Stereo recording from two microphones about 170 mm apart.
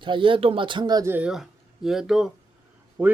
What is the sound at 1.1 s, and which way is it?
Speech, 5° right (ahead or behind).